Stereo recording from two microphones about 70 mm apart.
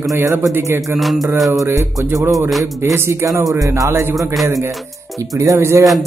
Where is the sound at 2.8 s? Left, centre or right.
Right.